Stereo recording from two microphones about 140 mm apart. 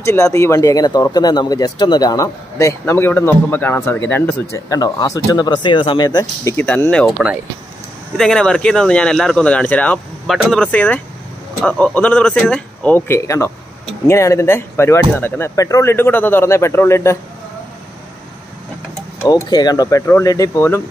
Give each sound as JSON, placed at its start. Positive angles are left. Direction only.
{"t": 0.0, "sound": "speech", "side_deg": 20}
{"t": 6.5, "sound": "speech", "side_deg": 15}
{"t": 19.2, "sound": "speech", "side_deg": 30}